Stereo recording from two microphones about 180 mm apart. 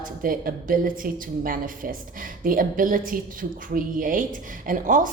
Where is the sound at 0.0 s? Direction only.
50° right (ahead or behind).